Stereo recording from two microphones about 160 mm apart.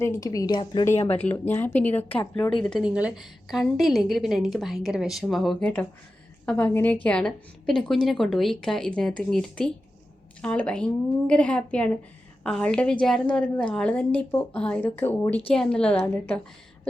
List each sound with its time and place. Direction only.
0.0 s a woman's voice: 20° left (ahead or behind)
1.1 s a woman's voice: 10° left (ahead or behind)
2.6 s a woman's voice: centre (ahead or behind)